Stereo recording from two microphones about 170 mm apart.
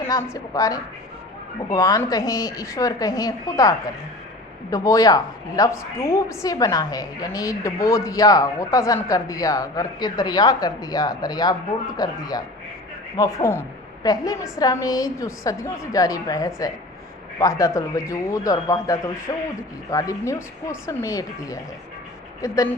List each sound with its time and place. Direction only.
0.0 s a woman's voice: 15° left (ahead or behind)